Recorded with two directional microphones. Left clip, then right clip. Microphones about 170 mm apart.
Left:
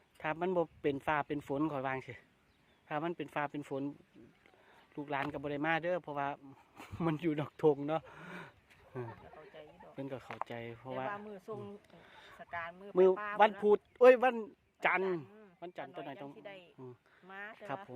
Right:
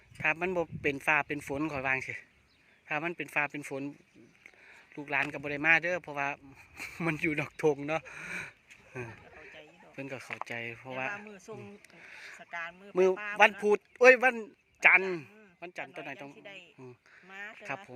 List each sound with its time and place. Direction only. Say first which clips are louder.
0.2 s a man's voice: right 4 dB; centre (ahead or behind)
4.9 s a man's voice: right 6 dB; centre (ahead or behind)
12.4 s speech: right 1 dB; 20° left (ahead or behind)
12.9 s a man's voice: right 1 dB; centre (ahead or behind)